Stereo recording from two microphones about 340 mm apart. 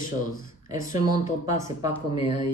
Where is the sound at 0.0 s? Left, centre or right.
Left.